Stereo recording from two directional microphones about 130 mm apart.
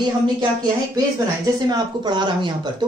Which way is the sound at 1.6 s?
35° right (ahead or behind).